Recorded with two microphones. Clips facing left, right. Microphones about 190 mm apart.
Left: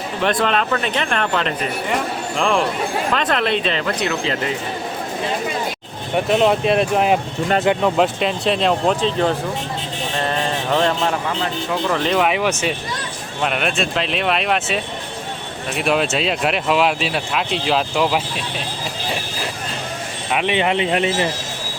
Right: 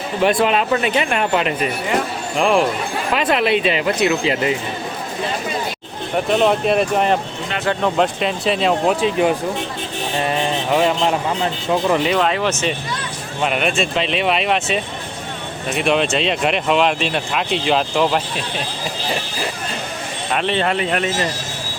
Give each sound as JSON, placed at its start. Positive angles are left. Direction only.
{"t": 0.4, "sound": "speech", "side_deg": -10}
{"t": 6.1, "sound": "speech", "side_deg": 0}
{"t": 10.2, "sound": "mantra", "side_deg": -15}
{"t": 11.0, "sound": "speech", "side_deg": -20}
{"t": 12.1, "sound": "speech", "side_deg": 10}
{"t": 13.4, "sound": "speech", "side_deg": 0}
{"t": 20.3, "sound": "speech", "side_deg": 15}